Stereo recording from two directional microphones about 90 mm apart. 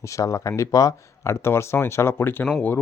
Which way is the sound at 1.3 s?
30° left (ahead or behind).